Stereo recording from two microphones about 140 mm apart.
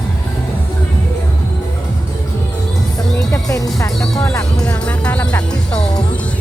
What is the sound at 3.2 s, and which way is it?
Music, 20° left (ahead or behind).